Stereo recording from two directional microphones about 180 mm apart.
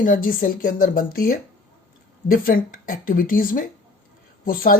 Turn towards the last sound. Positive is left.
turn(degrees=50)  # may be behind; listen again after turning